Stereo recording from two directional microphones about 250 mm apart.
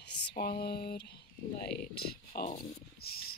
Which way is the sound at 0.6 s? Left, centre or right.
Left.